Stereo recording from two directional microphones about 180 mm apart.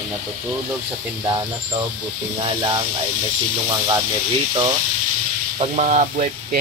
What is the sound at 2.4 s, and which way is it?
Speech, 25° right (ahead or behind).